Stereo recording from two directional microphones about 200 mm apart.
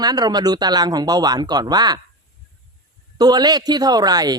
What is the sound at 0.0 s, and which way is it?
Speech, 20° right (ahead or behind).